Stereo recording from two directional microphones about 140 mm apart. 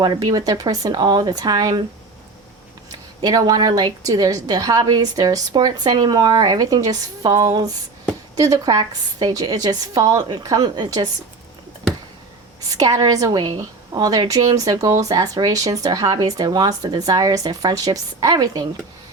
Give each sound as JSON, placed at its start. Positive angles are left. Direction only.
{"t": 0.0, "sound": "a woman's voice", "side_deg": -30}
{"t": 3.2, "sound": "a woman's voice", "side_deg": -25}
{"t": 12.7, "sound": "a woman's voice", "side_deg": -25}